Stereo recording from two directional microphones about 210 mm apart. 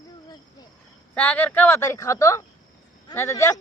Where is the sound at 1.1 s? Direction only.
5° left (ahead or behind).